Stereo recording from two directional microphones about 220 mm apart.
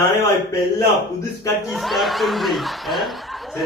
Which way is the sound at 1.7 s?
Centre (ahead or behind).